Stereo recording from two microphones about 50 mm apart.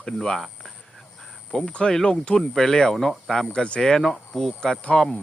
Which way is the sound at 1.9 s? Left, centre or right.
Centre.